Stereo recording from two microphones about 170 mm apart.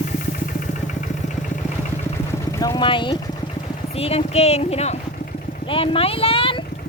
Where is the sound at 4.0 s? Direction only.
35° left (ahead or behind).